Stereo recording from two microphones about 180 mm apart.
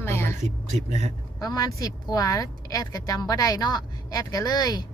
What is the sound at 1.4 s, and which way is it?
A woman's voice, 20° left (ahead or behind).